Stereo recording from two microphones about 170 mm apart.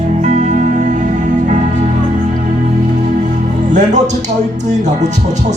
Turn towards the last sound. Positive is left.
turn(degrees=-45)  # may be behind; listen again after turning